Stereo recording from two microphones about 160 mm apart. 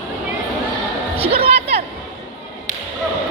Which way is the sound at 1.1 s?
35° right (ahead or behind).